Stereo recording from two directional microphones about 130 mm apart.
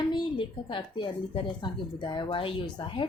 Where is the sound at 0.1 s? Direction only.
40° left (ahead or behind).